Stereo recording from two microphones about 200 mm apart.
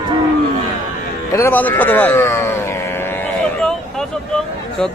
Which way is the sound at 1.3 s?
15° left (ahead or behind).